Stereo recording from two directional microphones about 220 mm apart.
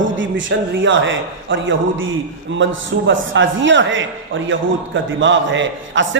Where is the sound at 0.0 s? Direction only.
60° right (ahead or behind).